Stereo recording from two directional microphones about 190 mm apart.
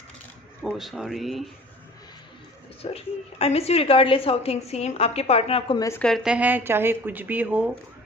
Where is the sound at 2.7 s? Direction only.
30° left (ahead or behind).